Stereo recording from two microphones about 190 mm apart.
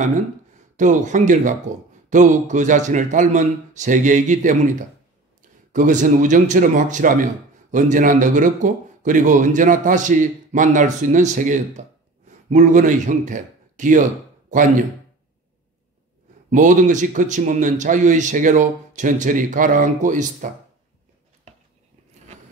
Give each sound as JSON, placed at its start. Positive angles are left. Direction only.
{"t": 0.7, "sound": "a man's voice", "side_deg": -40}
{"t": 16.4, "sound": "a man's voice", "side_deg": -40}